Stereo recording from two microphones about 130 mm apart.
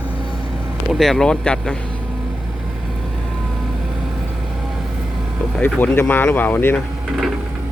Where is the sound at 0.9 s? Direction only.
Centre (ahead or behind).